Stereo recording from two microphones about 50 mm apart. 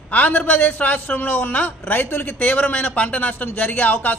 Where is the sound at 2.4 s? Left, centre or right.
Left.